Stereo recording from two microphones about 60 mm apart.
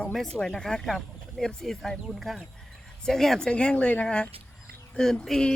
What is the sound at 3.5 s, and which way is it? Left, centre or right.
Speech, centre.